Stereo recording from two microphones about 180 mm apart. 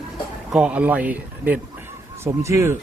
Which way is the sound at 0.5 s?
5° right (ahead or behind).